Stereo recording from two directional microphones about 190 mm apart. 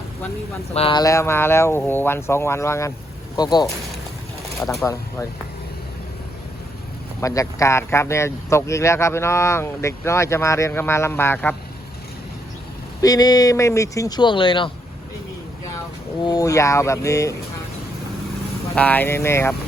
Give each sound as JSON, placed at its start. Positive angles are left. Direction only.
{"t": 0.7, "sound": "speech", "side_deg": 30}
{"t": 4.6, "sound": "speech", "side_deg": 0}
{"t": 7.2, "sound": "speech", "side_deg": 15}
{"t": 13.0, "sound": "speech", "side_deg": 20}
{"t": 16.2, "sound": "speech", "side_deg": 20}
{"t": 18.7, "sound": "speech", "side_deg": 10}